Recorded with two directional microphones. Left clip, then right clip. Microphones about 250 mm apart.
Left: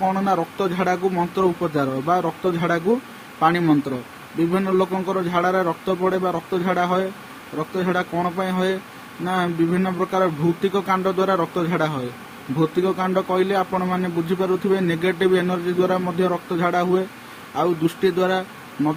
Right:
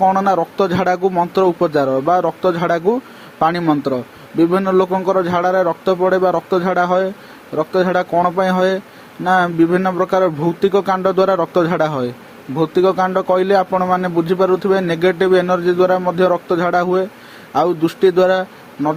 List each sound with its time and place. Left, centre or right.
0.1 s speech: right